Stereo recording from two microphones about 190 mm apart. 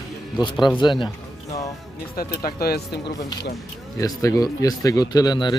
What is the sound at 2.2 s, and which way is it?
Speech, 55° left (ahead or behind).